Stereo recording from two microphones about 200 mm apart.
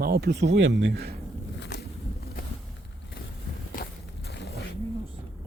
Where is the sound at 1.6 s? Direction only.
60° left (ahead or behind).